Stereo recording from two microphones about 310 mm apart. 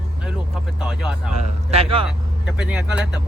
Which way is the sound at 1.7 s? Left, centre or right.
Centre.